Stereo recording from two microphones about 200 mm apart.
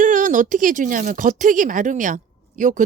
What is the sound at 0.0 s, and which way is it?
A woman's voice, 40° right (ahead or behind).